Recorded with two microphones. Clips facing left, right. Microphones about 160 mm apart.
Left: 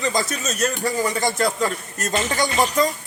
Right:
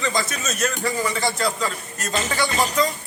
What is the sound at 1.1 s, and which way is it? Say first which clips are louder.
A man's voice: left 2 dB; 50° left (ahead or behind).